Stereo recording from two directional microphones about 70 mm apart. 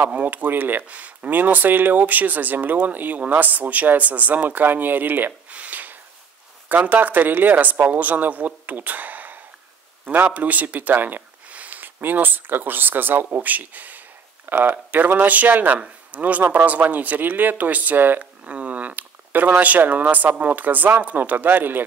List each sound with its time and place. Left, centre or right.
0.0 s speech: right